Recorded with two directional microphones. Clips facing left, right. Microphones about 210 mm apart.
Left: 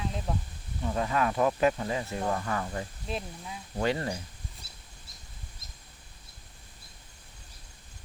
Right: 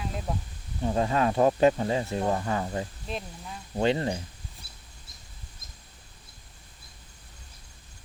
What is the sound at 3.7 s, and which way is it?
Speech, 25° right (ahead or behind).